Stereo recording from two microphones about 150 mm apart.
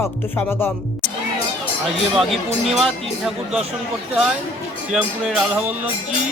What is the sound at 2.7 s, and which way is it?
Speech, centre (ahead or behind).